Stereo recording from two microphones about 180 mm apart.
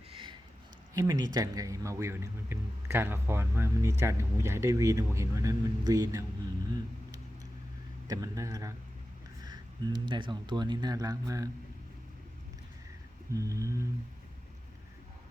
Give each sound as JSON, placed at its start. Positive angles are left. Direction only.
{"t": 0.1, "sound": "a sound", "side_deg": -30}
{"t": 0.9, "sound": "speech", "side_deg": -20}
{"t": 8.0, "sound": "speech", "side_deg": -20}
{"t": 9.4, "sound": "a sound", "side_deg": -20}
{"t": 10.1, "sound": "speech", "side_deg": -25}
{"t": 13.3, "sound": "speech", "side_deg": -20}